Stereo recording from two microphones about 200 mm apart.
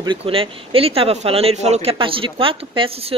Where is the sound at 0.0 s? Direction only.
25° right (ahead or behind).